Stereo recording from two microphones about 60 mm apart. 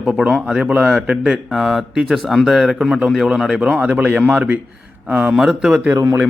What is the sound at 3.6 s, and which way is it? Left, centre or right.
A man's voice, right.